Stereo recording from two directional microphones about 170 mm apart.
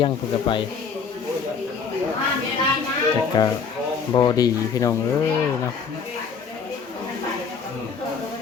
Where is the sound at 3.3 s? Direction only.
25° left (ahead or behind).